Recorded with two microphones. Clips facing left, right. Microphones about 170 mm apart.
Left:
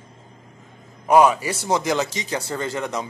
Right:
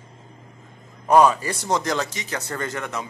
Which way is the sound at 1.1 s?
10° left (ahead or behind).